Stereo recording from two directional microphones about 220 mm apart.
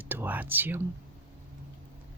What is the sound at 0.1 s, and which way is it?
Speech, 10° right (ahead or behind).